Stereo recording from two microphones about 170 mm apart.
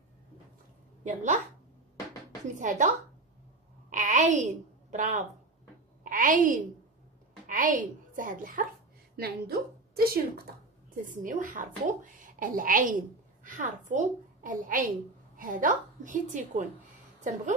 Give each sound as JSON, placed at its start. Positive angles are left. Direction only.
{"t": 1.0, "sound": "a woman's voice", "side_deg": -45}
{"t": 2.6, "sound": "a woman's voice", "side_deg": -45}
{"t": 3.9, "sound": "wail", "side_deg": -45}
{"t": 6.0, "sound": "a woman's voice", "side_deg": -50}
{"t": 9.1, "sound": "a woman's voice", "side_deg": -65}
{"t": 11.1, "sound": "a woman's voice", "side_deg": -50}